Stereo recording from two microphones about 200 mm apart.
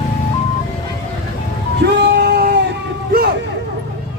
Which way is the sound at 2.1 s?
50° right (ahead or behind).